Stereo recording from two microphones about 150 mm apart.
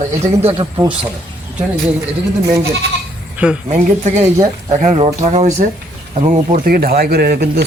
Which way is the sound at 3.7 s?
50° right (ahead or behind).